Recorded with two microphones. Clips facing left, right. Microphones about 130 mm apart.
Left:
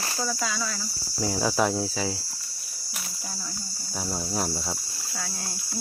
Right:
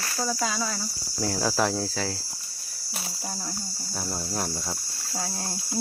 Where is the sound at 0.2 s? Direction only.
20° right (ahead or behind).